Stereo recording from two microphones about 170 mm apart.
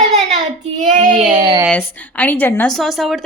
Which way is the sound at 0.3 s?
45° right (ahead or behind).